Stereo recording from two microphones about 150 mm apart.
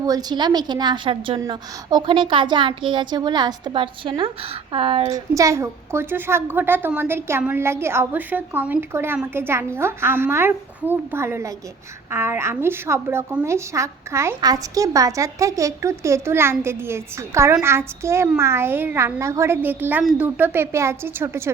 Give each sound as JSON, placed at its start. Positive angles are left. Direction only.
{"t": 0.0, "sound": "a woman's voice", "side_deg": -25}
{"t": 5.0, "sound": "a woman's voice", "side_deg": -25}